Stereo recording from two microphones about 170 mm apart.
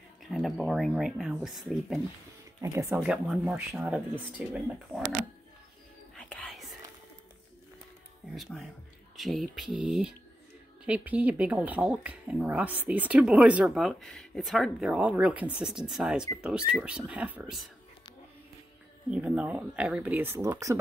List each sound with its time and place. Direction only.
0.3 s speech: centre (ahead or behind)
2.6 s speech: 15° right (ahead or behind)
2.9 s speech: 5° right (ahead or behind)
6.1 s whispering: 5° left (ahead or behind)
8.4 s speech: centre (ahead or behind)
19.0 s speech: 5° right (ahead or behind)